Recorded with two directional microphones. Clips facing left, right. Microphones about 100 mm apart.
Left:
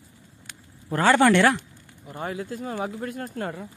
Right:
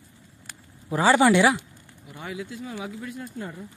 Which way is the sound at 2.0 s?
45° left (ahead or behind).